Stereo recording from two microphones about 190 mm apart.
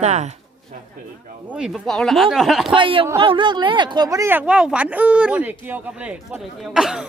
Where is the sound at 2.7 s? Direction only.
25° right (ahead or behind).